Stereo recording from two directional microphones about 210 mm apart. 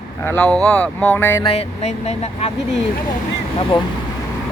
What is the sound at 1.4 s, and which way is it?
Speech, 30° left (ahead or behind).